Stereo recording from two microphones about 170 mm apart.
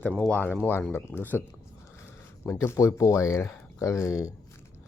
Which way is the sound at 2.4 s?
15° left (ahead or behind).